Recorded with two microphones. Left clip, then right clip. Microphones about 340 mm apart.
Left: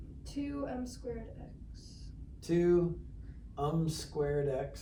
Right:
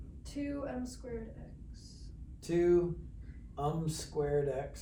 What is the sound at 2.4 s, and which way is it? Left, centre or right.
Speech, centre.